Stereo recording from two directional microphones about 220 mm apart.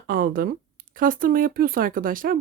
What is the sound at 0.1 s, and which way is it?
Speech, 40° right (ahead or behind).